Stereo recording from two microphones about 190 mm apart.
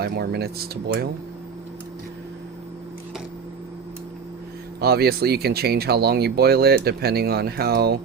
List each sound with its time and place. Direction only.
0.0 s speech: 55° right (ahead or behind)
4.8 s speech: 55° right (ahead or behind)